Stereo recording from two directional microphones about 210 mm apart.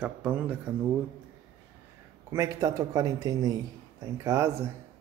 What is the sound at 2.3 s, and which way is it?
A man's voice, 15° right (ahead or behind).